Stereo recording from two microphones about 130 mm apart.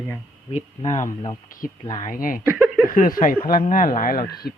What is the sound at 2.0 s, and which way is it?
Speech, 90° left.